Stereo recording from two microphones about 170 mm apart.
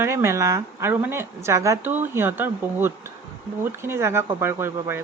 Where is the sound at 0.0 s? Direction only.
15° right (ahead or behind).